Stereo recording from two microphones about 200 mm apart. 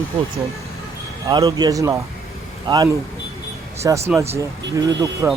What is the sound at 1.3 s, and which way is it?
Speech, 20° right (ahead or behind).